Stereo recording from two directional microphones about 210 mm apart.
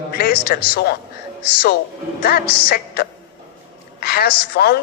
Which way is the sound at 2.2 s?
45° left (ahead or behind).